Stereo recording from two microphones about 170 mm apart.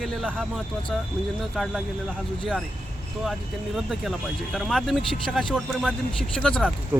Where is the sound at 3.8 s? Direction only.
Centre (ahead or behind).